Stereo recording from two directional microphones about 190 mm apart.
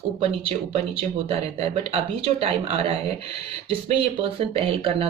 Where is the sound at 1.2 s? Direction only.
30° right (ahead or behind).